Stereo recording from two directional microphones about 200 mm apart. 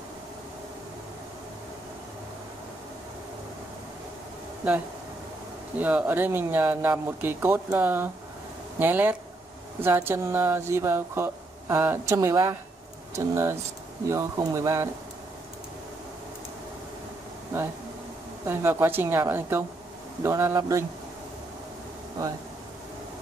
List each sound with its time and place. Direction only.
5.8 s speech: 10° right (ahead or behind)
18.4 s speech: 10° right (ahead or behind)